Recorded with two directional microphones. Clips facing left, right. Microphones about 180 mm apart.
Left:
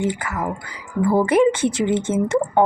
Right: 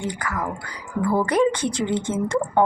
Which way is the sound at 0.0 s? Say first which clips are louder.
Left 4 dB; 25° left (ahead or behind).